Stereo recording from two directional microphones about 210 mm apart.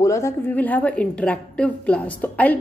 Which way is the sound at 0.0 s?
15° left (ahead or behind).